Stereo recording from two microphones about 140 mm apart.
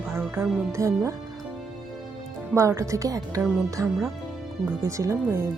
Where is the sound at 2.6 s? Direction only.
20° right (ahead or behind).